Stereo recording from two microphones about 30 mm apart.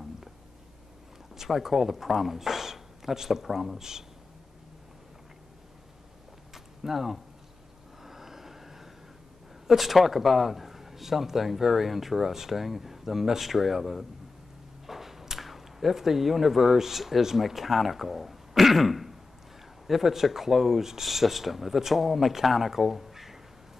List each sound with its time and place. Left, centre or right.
1.3 s speech: centre
6.5 s a sound: centre
8.0 s vehicle: centre
9.7 s a man's voice: centre